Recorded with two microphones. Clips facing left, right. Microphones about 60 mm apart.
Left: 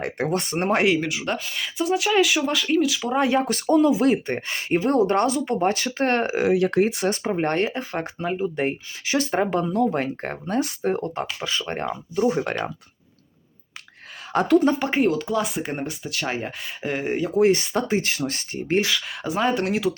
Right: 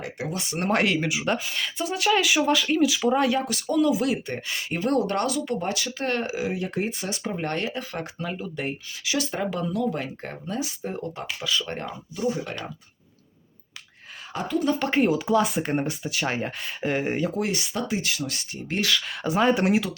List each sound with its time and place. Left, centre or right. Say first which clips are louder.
0.0 s speech: left 7 dB; left
0.6 s speech: left 2 dB; centre
1.0 s speech: right 1 dB; centre
3.2 s speech: left 3 dB; left
6.4 s speech: left 8 dB; left
7.3 s speech: left 3 dB; left
11.3 s speech: left 1 dB; left
14.3 s speech: left 9 dB; left
14.8 s speech: left 1 dB; centre
15.0 s speech: right 1 dB; centre
17.4 s speech: left 9 dB; left
18.9 s speech: right 1 dB; centre